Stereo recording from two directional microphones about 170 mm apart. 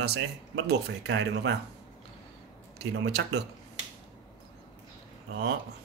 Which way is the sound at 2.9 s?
85° right.